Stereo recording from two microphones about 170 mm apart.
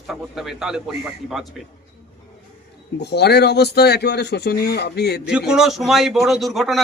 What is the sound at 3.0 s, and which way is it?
Speech, 75° left (ahead or behind).